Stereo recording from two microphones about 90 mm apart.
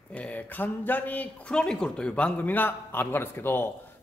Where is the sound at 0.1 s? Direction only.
15° left (ahead or behind).